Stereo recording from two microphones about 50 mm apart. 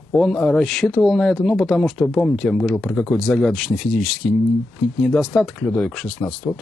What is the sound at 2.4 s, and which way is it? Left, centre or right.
Speech, left.